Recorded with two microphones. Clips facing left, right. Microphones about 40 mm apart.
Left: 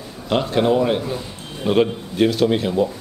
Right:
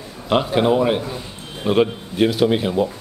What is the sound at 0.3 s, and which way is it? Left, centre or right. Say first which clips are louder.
Speech: right 1 dB; centre.